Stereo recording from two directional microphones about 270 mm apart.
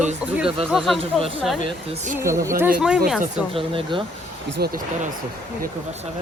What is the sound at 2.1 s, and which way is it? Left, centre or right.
Speech, centre.